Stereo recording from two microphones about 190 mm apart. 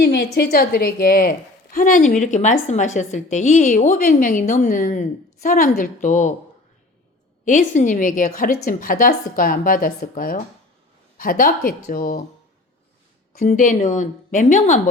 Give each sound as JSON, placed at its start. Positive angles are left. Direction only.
{"t": 0.0, "sound": "a woman's voice", "side_deg": 60}
{"t": 7.4, "sound": "a woman's voice", "side_deg": 40}
{"t": 13.3, "sound": "a woman's voice", "side_deg": 45}